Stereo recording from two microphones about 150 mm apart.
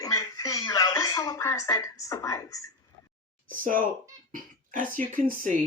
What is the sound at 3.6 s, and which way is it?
Speech, 65° right (ahead or behind).